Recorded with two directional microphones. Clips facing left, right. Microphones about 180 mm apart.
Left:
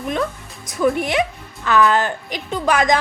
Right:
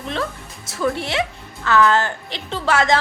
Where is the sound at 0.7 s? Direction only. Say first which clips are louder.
Left 4 dB; 15° left (ahead or behind).